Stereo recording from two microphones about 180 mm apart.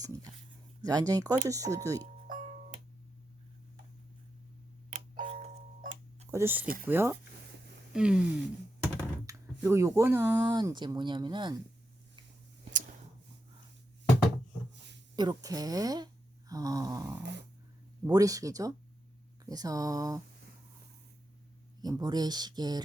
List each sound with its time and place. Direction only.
0.0 s a sound: 20° right (ahead or behind)
0.9 s speech: 20° right (ahead or behind)
2.2 s music: 45° right (ahead or behind)
4.9 s doorbell: 35° right (ahead or behind)
6.3 s speech: 10° right (ahead or behind)
15.1 s speech: 20° right (ahead or behind)
21.8 s speech: 20° right (ahead or behind)